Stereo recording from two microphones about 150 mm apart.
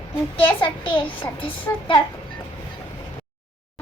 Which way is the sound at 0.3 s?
35° left (ahead or behind).